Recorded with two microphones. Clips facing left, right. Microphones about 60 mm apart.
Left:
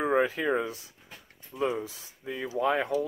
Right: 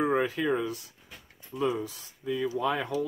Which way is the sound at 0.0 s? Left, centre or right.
Left.